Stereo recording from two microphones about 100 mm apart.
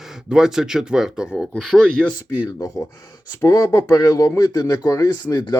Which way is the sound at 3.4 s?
30° left (ahead or behind).